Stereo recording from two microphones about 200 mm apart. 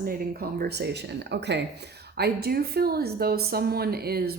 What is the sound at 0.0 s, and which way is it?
A woman's voice, 45° right (ahead or behind).